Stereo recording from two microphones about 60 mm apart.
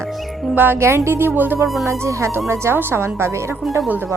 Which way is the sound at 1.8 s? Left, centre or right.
Right.